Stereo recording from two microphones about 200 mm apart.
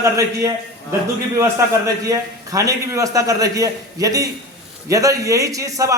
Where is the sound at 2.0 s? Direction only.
15° right (ahead or behind).